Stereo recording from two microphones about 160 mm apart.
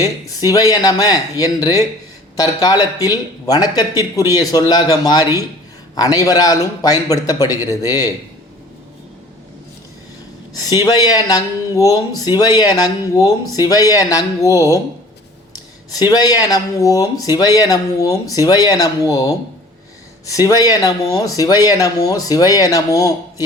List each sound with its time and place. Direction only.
0.0 s speech: 20° left (ahead or behind)
10.7 s speech: 25° left (ahead or behind)
16.0 s speech: 25° left (ahead or behind)